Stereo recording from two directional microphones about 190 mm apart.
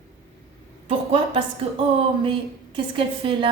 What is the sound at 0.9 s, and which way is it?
A woman's voice, 30° right (ahead or behind).